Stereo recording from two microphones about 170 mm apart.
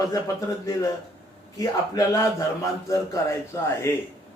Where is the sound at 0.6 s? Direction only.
20° left (ahead or behind).